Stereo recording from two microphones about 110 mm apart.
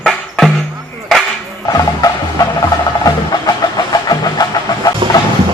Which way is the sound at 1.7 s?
35° left (ahead or behind).